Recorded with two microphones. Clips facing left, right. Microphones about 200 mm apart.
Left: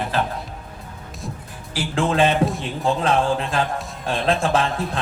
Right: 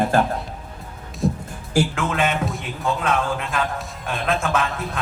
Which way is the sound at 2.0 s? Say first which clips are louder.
Left 4 dB; 30° left (ahead or behind).